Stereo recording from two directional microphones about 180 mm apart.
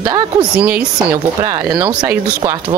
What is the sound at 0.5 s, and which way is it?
Speech, 10° right (ahead or behind).